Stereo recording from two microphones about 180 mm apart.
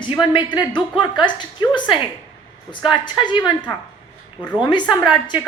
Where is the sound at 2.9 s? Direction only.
25° left (ahead or behind).